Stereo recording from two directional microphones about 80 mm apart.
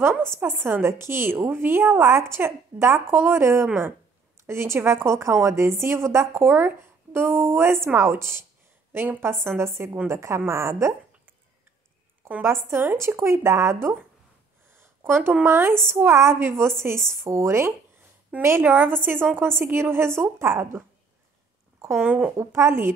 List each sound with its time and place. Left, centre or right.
0.4 s a woman's voice: right
12.3 s a woman's voice: right
14.8 s a sound: right
15.4 s a woman's voice: right
22.0 s a woman's voice: centre
22.4 s a woman's voice: right